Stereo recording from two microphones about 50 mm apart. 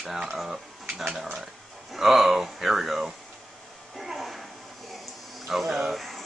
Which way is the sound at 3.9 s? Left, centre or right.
Centre.